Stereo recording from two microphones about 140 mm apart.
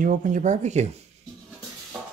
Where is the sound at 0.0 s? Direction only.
70° right (ahead or behind).